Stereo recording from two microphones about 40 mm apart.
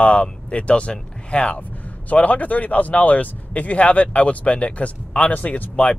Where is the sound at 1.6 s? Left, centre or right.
Left.